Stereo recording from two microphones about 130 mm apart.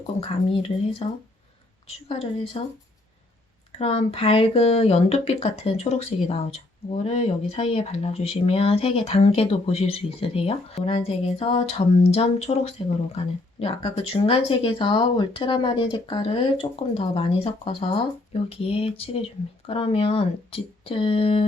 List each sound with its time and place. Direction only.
0.2 s speech: 45° left (ahead or behind)
3.8 s speech: 50° left (ahead or behind)